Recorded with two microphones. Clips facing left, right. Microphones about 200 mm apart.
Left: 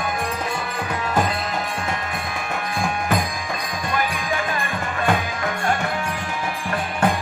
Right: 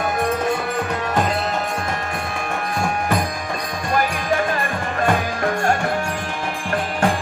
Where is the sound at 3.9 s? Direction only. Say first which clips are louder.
Right 5 dB; 40° right (ahead or behind).